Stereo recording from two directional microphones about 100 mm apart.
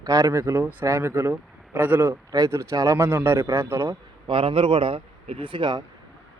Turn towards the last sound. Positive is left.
turn(degrees=-50)  # may be behind; listen again after turning